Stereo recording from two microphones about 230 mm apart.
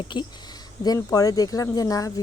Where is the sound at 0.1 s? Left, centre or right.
Centre.